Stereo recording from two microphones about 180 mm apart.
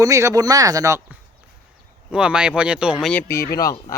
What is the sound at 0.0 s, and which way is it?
Speech, 15° right (ahead or behind).